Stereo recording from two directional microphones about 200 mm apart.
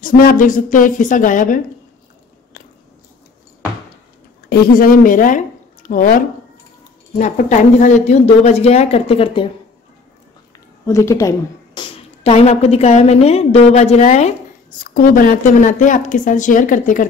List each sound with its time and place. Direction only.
0.0 s a woman's voice: 45° left (ahead or behind)
4.5 s a woman's voice: 45° left (ahead or behind); by 9.5 s 25° left (ahead or behind)
10.9 s a woman's voice: 15° left (ahead or behind); by 14.3 s 35° left (ahead or behind)
14.8 s a woman's voice: 45° left (ahead or behind)